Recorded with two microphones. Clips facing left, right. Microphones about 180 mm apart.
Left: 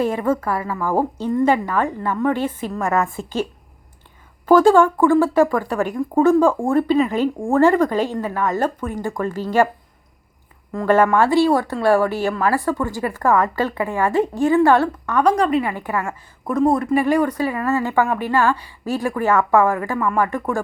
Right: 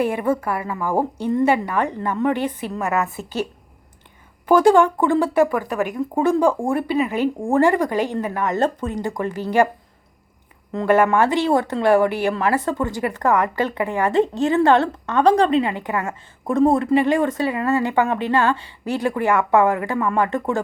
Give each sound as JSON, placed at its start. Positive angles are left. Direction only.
{"t": 0.0, "sound": "speech", "side_deg": -10}
{"t": 4.4, "sound": "speech", "side_deg": -15}
{"t": 11.1, "sound": "speech", "side_deg": -20}